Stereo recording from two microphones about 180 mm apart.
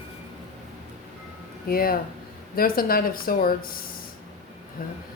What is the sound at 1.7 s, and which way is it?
Speech, 55° left (ahead or behind).